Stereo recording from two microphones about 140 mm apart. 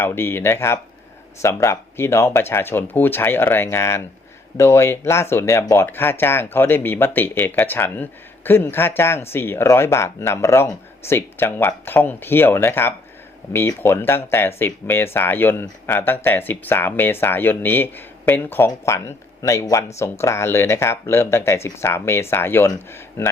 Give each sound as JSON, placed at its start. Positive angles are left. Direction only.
{"t": 0.0, "sound": "speech", "side_deg": 15}